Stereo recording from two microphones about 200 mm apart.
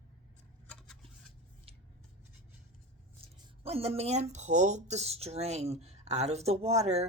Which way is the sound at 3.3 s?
30° right (ahead or behind).